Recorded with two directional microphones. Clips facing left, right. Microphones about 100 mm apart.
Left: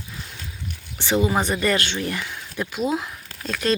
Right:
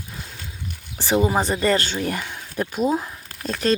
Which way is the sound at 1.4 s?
35° right (ahead or behind).